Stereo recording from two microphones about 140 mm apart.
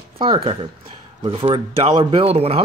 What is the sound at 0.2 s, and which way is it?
Speech, 40° right (ahead or behind).